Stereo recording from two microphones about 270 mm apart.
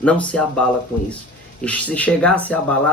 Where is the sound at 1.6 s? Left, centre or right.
Centre.